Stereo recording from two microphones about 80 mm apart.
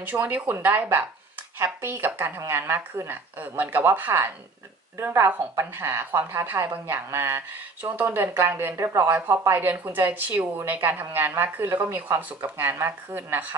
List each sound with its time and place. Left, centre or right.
0.0 s a woman's voice: centre
7.8 s a woman's voice: right